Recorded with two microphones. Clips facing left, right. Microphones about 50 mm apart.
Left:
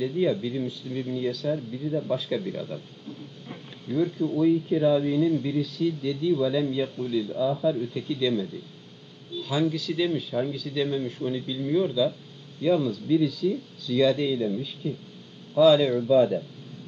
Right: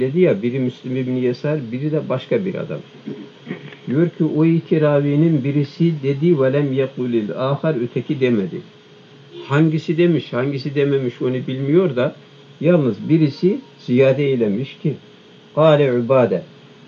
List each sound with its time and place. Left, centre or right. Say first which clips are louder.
0.0 s a man's voice: right 10 dB; right
1.5 s speech: right 7 dB; right
2.1 s a man's voice: right 9 dB; right
4.5 s speech: right 2 dB; right
5.0 s a man's voice: right 7 dB; right
7.3 s speech: right 5 dB; right
7.9 s a man's voice: right 9 dB; right
10.2 s a man's voice: right 7 dB; right
12.6 s a man's voice: right 8 dB; right
13.1 s a man's voice: right 7 dB; right